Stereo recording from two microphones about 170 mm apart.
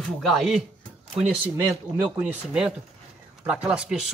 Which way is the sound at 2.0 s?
5° right (ahead or behind).